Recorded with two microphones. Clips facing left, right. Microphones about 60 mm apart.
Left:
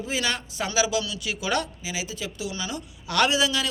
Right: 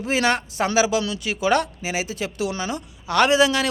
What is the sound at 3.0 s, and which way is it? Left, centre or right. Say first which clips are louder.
Speech: right 5 dB; right.